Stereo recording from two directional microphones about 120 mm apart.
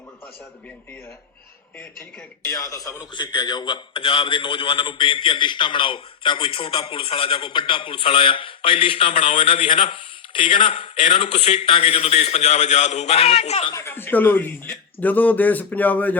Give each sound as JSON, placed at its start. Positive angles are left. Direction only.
{"t": 2.5, "sound": "a man's voice", "side_deg": 30}
{"t": 13.7, "sound": "speech", "side_deg": 20}